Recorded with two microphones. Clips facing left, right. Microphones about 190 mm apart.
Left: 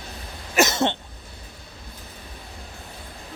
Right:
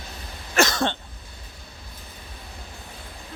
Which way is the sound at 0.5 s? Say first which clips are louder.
Left 1 dB; 20° left (ahead or behind).